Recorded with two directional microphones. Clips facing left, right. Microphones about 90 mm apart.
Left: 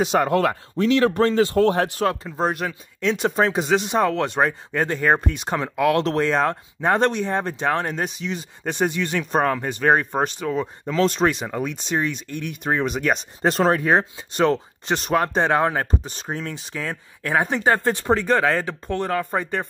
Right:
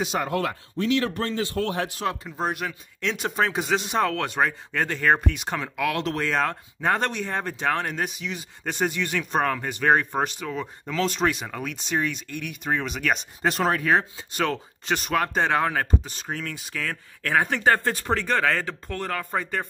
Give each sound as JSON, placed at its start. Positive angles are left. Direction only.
{"t": 0.0, "sound": "speech", "side_deg": 45}
{"t": 1.2, "sound": "speech", "side_deg": 85}
{"t": 1.7, "sound": "speech", "side_deg": 50}
{"t": 2.2, "sound": "speech", "side_deg": 30}
{"t": 5.3, "sound": "speech", "side_deg": 30}
{"t": 11.0, "sound": "speech", "side_deg": 30}